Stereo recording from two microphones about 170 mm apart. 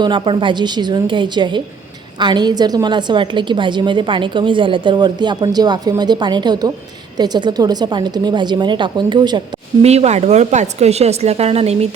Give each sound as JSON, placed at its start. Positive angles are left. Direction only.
{"t": 0.0, "sound": "a woman's voice", "side_deg": -30}
{"t": 9.8, "sound": "speech", "side_deg": -40}